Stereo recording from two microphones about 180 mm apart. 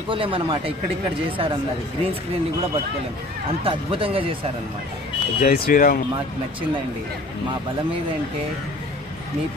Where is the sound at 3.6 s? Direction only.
30° right (ahead or behind).